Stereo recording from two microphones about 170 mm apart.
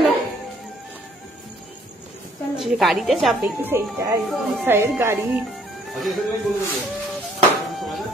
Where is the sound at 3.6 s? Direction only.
15° right (ahead or behind).